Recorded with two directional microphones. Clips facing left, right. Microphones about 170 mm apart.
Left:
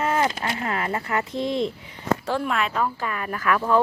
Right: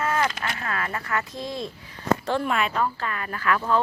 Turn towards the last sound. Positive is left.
turn(degrees=10)  # may be behind; listen again after turning